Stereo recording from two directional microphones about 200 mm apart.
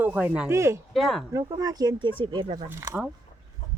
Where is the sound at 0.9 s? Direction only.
Centre (ahead or behind).